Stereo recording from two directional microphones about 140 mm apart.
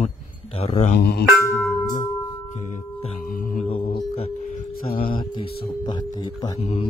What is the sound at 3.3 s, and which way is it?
Singing bowl, 80° left.